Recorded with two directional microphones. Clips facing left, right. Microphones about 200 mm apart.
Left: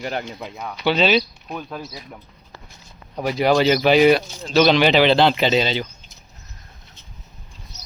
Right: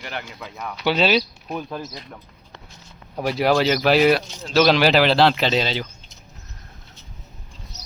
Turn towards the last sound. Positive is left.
turn(degrees=0)  # may be behind; listen again after turning